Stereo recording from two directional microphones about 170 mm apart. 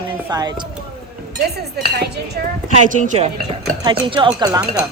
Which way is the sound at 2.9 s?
45° right (ahead or behind).